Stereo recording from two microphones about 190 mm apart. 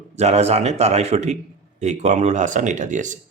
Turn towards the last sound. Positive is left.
turn(degrees=-40)  # may be behind; listen again after turning